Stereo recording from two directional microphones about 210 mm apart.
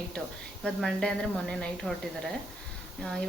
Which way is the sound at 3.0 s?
5° left (ahead or behind).